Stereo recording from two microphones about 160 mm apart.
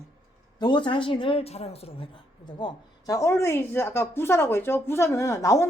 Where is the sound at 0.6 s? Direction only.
30° left (ahead or behind).